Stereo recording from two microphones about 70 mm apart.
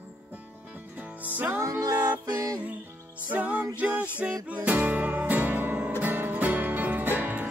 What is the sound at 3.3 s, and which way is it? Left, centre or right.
Music, right.